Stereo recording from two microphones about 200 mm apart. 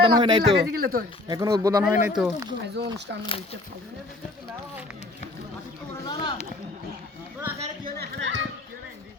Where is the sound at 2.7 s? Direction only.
60° right (ahead or behind).